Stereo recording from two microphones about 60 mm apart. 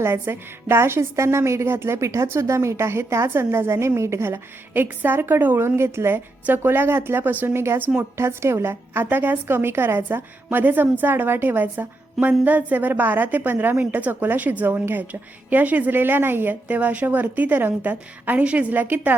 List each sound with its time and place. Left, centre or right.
0.0 s a woman's voice: right
4.7 s a woman's voice: right
5.6 s a woman's voice: right
7.8 s a woman's voice: right
8.2 s a woman's voice: right
9.0 s a woman's voice: right